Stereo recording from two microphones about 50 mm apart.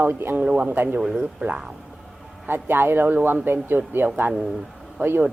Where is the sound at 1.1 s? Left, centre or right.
Right.